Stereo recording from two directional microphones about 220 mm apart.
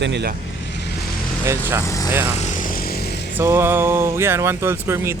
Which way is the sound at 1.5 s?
10° right (ahead or behind).